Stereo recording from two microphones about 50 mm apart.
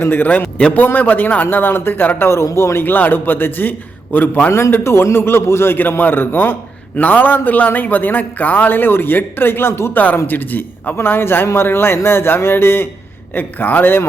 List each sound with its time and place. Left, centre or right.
0.0 s a man's voice: left
2.3 s a man's voice: left
2.8 s a man's voice: left
4.7 s a man's voice: left
6.0 s a man's voice: left
9.9 s a man's voice: left
10.9 s speech: left
13.3 s a man's voice: left